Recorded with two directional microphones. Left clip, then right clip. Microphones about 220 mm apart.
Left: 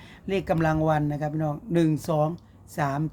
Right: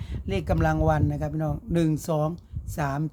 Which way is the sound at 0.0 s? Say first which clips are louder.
Left 3 dB; 15° right (ahead or behind).